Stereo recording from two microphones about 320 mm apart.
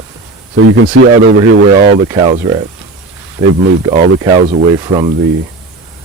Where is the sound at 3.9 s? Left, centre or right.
Centre.